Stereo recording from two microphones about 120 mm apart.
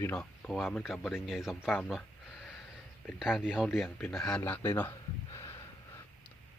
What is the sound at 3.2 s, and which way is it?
Speech, 5° right (ahead or behind).